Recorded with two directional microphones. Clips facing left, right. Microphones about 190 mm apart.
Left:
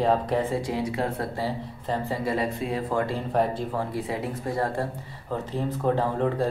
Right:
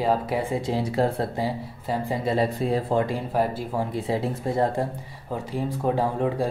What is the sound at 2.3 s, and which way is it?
Speech, 30° right (ahead or behind).